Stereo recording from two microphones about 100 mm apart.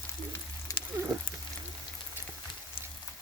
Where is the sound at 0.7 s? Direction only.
35° left (ahead or behind).